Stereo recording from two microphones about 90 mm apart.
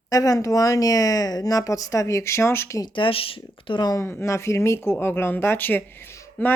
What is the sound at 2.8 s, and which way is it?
Speech, 65° left (ahead or behind).